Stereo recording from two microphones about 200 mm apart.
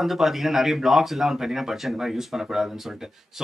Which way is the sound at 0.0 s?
Centre (ahead or behind).